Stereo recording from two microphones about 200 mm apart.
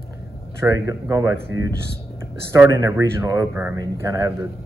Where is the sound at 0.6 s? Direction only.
15° right (ahead or behind).